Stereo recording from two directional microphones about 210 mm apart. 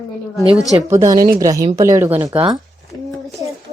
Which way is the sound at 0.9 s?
15° right (ahead or behind).